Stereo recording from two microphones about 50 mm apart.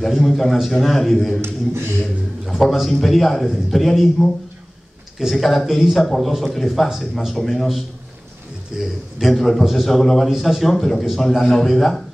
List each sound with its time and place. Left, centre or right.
0.0 s a man's voice: centre
1.4 s a sound: right
2.6 s a man's voice: centre
8.7 s a man's voice: centre
9.3 s a man's voice: centre